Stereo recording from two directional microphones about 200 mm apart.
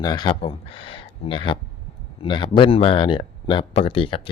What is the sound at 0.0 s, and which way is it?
Speech, 20° left (ahead or behind).